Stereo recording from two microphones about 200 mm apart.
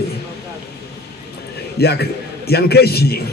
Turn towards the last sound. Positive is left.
turn(degrees=50)  # may be behind; listen again after turning